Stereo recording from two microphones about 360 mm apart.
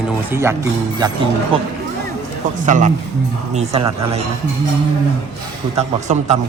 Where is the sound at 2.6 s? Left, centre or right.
Right.